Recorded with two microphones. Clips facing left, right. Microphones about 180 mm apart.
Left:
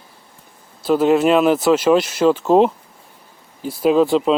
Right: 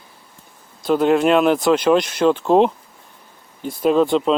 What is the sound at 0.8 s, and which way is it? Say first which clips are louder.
Speech: left 1 dB; 5° left (ahead or behind).